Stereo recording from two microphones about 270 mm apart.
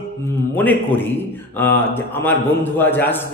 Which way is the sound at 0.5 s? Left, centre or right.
Centre.